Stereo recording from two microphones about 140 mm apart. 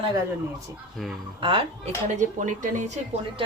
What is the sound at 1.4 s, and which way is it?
Speech, 40° right (ahead or behind).